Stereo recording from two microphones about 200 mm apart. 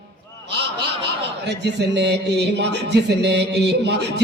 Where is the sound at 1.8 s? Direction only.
60° right (ahead or behind).